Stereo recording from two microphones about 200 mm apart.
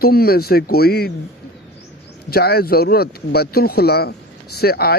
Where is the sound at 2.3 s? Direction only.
50° left (ahead or behind).